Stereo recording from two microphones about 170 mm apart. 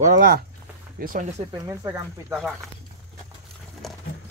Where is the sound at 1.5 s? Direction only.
20° right (ahead or behind).